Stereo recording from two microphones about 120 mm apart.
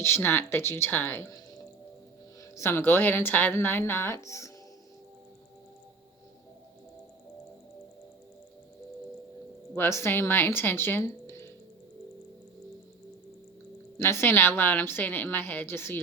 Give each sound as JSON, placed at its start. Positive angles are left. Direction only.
{"t": 0.0, "sound": "speech", "side_deg": 20}
{"t": 2.6, "sound": "a woman's voice", "side_deg": 20}
{"t": 9.7, "sound": "speech", "side_deg": 20}
{"t": 14.0, "sound": "a woman's voice", "side_deg": 20}